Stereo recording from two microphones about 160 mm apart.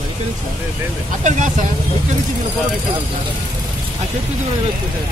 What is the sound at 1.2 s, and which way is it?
Speech, 50° right (ahead or behind).